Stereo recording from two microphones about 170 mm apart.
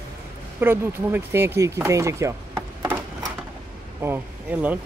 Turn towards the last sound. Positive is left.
turn(degrees=-10)  # may be behind; listen again after turning